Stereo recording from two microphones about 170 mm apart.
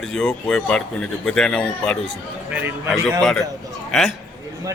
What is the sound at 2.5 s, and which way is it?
A man's voice, 5° right (ahead or behind).